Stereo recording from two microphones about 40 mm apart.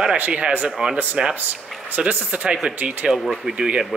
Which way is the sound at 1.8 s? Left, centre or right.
Right.